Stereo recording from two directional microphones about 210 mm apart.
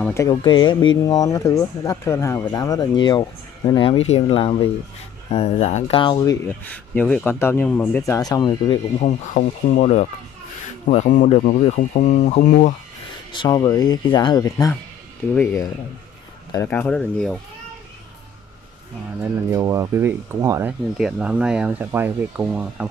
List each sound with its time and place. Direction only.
0.0 s speech: 15° left (ahead or behind)
6.6 s speech: 5° left (ahead or behind)
9.0 s speech: 35° left (ahead or behind)
13.3 s speech: 20° left (ahead or behind); by 17.4 s 5° left (ahead or behind)
19.2 s speech: 15° right (ahead or behind)